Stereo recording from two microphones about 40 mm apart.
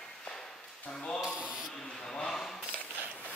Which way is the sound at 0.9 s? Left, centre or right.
Left.